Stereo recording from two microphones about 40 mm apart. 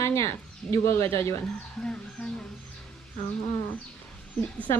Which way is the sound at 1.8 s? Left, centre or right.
Left.